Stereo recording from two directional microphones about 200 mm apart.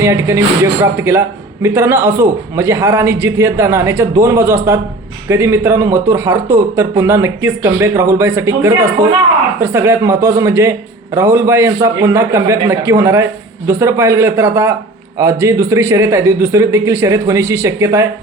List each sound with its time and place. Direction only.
0.0 s a man's voice: 15° right (ahead or behind)